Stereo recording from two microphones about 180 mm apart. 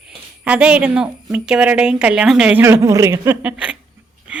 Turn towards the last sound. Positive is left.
turn(degrees=-5)  # may be behind; listen again after turning